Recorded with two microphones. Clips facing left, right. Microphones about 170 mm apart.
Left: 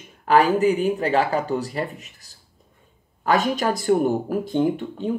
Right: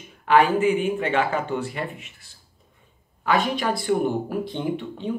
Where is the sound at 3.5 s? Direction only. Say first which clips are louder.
Left 3 dB; 45° left (ahead or behind).